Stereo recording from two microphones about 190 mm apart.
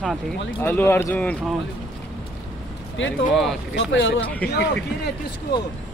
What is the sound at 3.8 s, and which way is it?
Speech, 80° left.